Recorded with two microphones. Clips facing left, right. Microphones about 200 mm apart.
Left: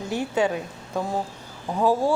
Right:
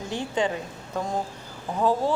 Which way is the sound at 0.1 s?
10° left (ahead or behind).